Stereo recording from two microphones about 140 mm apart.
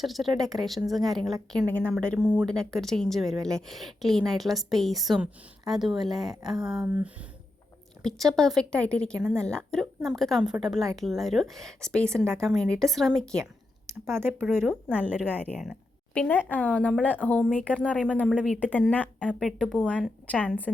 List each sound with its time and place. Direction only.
0.0 s a woman's voice: centre (ahead or behind)
2.1 s speech: 5° right (ahead or behind)
2.5 s a woman's voice: 5° left (ahead or behind); by 7.3 s 10° right (ahead or behind)
8.0 s a woman's voice: centre (ahead or behind)
13.8 s a woman's voice: 20° right (ahead or behind); by 20.7 s 10° left (ahead or behind)